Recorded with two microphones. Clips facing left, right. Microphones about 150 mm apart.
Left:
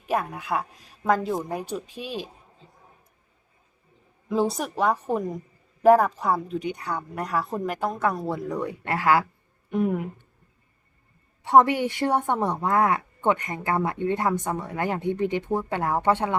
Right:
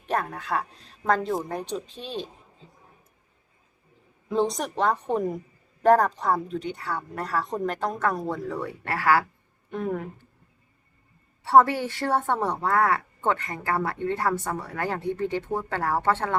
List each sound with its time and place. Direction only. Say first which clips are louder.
0.0 s a woman's voice: left 1 dB; 10° left (ahead or behind)
4.3 s a woman's voice: even; 5° left (ahead or behind)
8.4 s a woman's voice: left 2 dB; 15° left (ahead or behind)
11.4 s a woman's voice: left 1 dB; 20° left (ahead or behind)